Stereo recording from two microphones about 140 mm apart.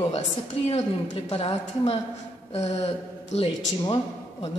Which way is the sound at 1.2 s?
40° left (ahead or behind).